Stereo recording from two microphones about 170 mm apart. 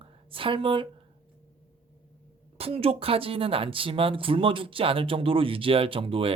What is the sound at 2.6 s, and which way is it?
Speech, 35° right (ahead or behind).